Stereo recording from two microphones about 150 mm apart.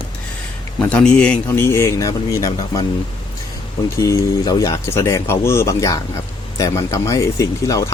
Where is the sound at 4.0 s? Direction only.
25° left (ahead or behind).